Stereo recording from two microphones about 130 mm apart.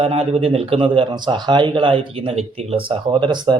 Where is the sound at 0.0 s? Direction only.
50° right (ahead or behind).